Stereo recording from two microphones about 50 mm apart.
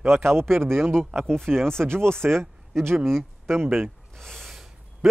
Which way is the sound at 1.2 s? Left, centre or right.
Centre.